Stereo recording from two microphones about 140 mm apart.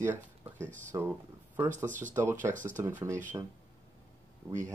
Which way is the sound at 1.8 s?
65° right (ahead or behind).